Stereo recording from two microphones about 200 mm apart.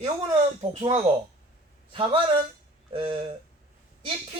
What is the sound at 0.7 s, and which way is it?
Speech, 30° right (ahead or behind).